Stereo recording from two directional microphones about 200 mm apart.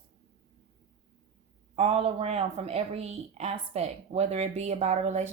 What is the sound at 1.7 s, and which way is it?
A woman's voice, 30° right (ahead or behind).